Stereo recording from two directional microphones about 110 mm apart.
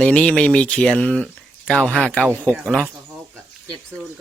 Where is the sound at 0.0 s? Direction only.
10° left (ahead or behind).